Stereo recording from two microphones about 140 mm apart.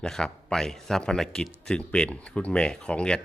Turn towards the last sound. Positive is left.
turn(degrees=5)  # may be behind; listen again after turning